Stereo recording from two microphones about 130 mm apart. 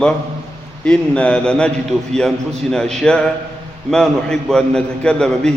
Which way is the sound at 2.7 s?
5° left (ahead or behind).